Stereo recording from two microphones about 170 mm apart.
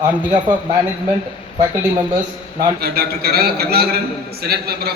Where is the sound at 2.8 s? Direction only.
65° right (ahead or behind).